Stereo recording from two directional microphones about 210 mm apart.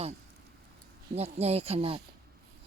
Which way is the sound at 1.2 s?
30° right (ahead or behind).